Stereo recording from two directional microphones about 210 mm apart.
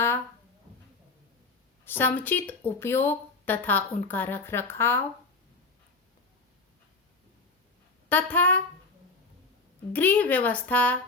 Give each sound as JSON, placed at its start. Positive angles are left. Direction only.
{"t": 1.8, "sound": "speech", "side_deg": 10}
{"t": 8.1, "sound": "speech", "side_deg": 10}
{"t": 9.9, "sound": "speech", "side_deg": 10}